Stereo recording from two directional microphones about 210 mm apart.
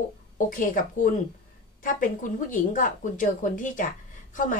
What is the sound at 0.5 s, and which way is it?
Speech, 40° left (ahead or behind).